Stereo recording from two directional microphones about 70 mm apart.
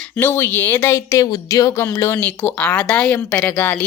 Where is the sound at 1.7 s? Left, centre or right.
Left.